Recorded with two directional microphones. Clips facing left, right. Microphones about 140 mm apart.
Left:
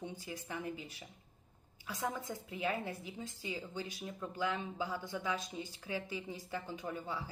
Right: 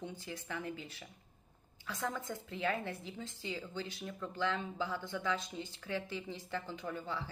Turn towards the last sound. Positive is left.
turn(degrees=10)  # may be behind; listen again after turning